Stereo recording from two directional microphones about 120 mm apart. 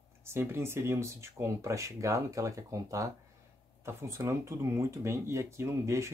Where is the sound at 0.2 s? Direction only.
20° right (ahead or behind).